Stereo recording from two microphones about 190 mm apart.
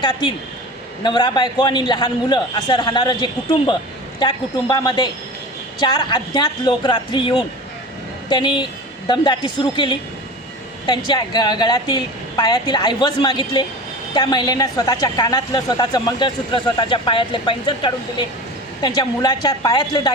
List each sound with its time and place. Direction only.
0.0 s a woman's voice: 25° left (ahead or behind)